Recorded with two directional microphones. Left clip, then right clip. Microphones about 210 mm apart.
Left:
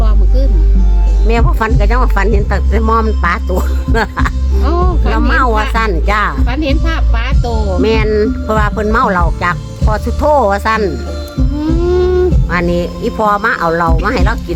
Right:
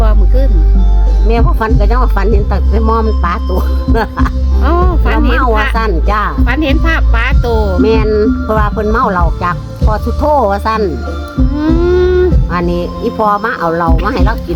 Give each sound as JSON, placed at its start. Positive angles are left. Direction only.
{"t": 1.3, "sound": "speech", "side_deg": 5}
{"t": 4.6, "sound": "music", "side_deg": -35}
{"t": 5.2, "sound": "speech", "side_deg": 5}
{"t": 6.4, "sound": "speech", "side_deg": -35}
{"t": 7.8, "sound": "speech", "side_deg": 5}
{"t": 11.6, "sound": "music", "side_deg": -35}
{"t": 12.5, "sound": "speech", "side_deg": 5}